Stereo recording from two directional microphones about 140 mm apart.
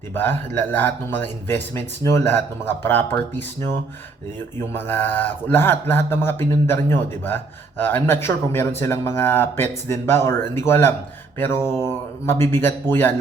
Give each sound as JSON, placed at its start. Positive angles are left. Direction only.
{"t": 0.1, "sound": "a man's voice", "side_deg": 15}
{"t": 4.7, "sound": "a man's voice", "side_deg": 15}